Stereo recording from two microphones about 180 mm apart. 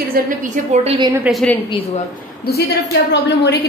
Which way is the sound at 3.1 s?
70° left (ahead or behind).